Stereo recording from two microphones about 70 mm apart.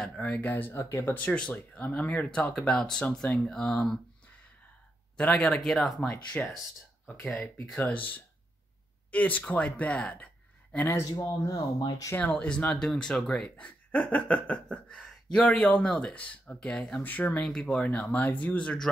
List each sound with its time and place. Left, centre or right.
0.0 s speech: centre
0.7 s speech: left
1.0 s speech: left
5.1 s speech: centre
6.0 s speech: centre
7.7 s speech: left
11.0 s speech: left
12.4 s speech: centre
17.4 s speech: centre
18.1 s speech: left